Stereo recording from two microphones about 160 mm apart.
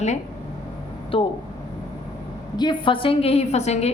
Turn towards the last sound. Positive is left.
turn(degrees=45)  # may be behind; listen again after turning